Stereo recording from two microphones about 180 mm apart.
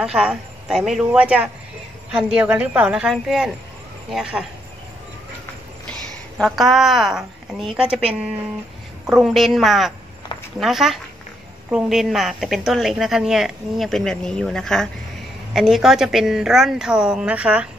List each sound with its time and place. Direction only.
0.0 s a woman's voice: 5° right (ahead or behind)
5.9 s a woman's voice: 5° left (ahead or behind)
9.1 s a woman's voice: centre (ahead or behind)